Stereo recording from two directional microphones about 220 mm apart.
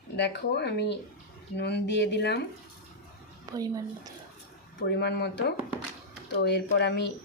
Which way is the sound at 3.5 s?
15° right (ahead or behind).